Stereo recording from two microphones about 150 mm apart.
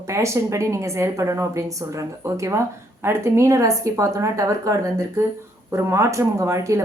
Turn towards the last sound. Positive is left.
turn(degrees=-20)  # may be behind; listen again after turning